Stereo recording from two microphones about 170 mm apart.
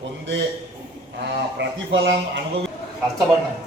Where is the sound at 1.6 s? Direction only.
90° right.